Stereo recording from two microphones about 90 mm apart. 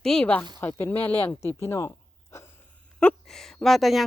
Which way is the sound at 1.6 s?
30° left (ahead or behind).